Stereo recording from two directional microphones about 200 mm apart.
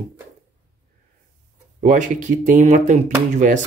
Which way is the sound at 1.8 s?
40° right (ahead or behind).